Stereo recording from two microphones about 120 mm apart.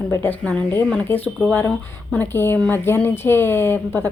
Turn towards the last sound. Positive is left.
turn(degrees=15)  # may be behind; listen again after turning